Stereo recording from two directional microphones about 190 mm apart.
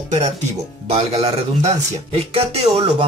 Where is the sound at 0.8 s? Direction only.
35° right (ahead or behind).